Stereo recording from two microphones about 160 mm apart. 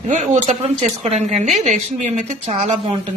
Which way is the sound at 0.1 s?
50° right (ahead or behind).